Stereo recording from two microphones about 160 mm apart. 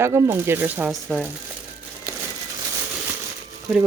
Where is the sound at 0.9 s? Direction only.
Centre (ahead or behind).